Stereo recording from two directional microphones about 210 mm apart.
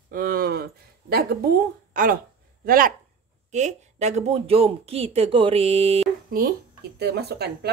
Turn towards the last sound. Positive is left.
turn(degrees=-50)  # may be behind; listen again after turning